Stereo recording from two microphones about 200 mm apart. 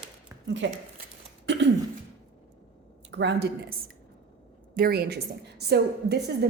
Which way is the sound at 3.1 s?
60° right (ahead or behind).